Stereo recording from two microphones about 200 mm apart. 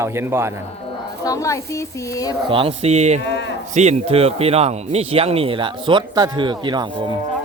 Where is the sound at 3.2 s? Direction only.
60° left (ahead or behind).